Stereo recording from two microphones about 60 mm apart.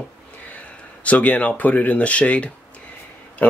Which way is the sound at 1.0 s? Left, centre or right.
Left.